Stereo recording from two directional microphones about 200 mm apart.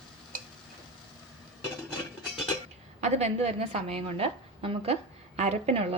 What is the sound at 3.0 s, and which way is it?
A woman's voice, 35° right (ahead or behind).